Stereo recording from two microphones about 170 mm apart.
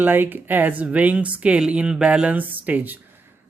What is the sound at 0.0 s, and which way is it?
Speech, 10° right (ahead or behind).